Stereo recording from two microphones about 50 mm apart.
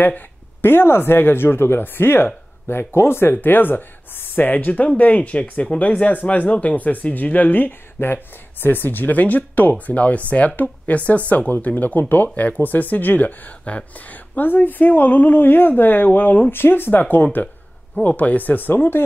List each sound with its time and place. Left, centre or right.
0.6 s speech: left